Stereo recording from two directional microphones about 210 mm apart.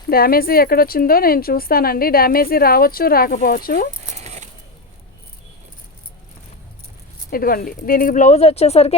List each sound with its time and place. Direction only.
0.1 s speech: 45° left (ahead or behind)
4.2 s a sound: 30° right (ahead or behind)
7.3 s speech: 45° left (ahead or behind)